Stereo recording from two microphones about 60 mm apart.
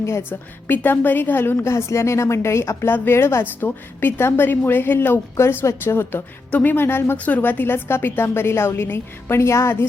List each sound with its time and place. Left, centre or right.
0.2 s a woman's voice: left
1.5 s a woman's voice: left
2.9 s a woman's voice: left
5.4 s a woman's voice: left
6.5 s a woman's voice: left
6.7 s a woman's voice: left
7.2 s a woman's voice: left